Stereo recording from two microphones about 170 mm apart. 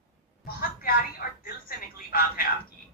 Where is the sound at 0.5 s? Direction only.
60° left (ahead or behind).